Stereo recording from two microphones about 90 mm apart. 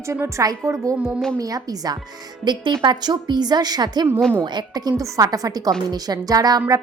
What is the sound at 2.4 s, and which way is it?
A woman's voice, 60° right (ahead or behind).